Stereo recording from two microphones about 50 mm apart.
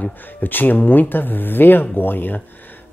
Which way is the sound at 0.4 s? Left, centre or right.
Left.